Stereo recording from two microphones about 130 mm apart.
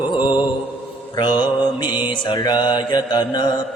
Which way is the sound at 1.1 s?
35° left (ahead or behind).